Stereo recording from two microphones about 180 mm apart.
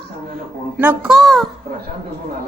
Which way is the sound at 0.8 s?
5° right (ahead or behind).